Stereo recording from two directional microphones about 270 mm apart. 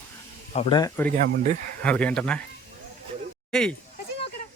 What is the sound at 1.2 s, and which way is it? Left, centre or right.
Speech, right.